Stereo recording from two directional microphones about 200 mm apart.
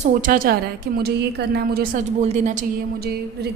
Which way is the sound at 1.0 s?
55° right (ahead or behind).